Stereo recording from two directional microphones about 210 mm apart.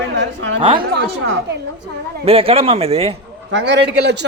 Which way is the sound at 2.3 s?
25° right (ahead or behind).